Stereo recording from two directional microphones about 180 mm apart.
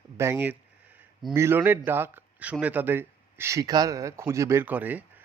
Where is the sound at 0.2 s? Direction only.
10° right (ahead or behind).